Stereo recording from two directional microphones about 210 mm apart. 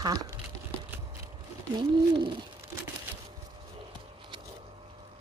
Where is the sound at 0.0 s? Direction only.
15° right (ahead or behind).